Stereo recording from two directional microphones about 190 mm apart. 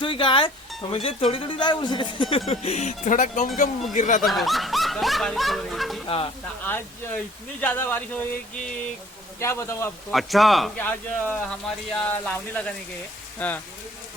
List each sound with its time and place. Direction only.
0.0 s a sound: 25° left (ahead or behind)
0.8 s speech: 30° left (ahead or behind)
4.2 s speech: centre (ahead or behind)
6.1 s speech: 30° left (ahead or behind)
6.7 s speech: 10° left (ahead or behind)
9.4 s speech: 15° left (ahead or behind)
10.1 s speech: centre (ahead or behind)